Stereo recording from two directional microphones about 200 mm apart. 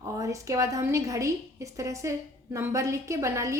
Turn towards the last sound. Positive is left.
turn(degrees=-15)  # may be behind; listen again after turning